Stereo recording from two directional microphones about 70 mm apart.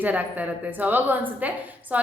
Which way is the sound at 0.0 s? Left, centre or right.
Right.